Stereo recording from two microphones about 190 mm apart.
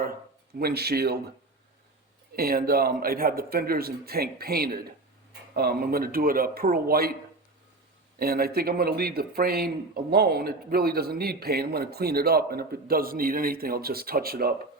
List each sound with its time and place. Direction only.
0.6 s speech: 55° right (ahead or behind)
2.3 s speech: 50° right (ahead or behind)
8.2 s speech: 50° right (ahead or behind)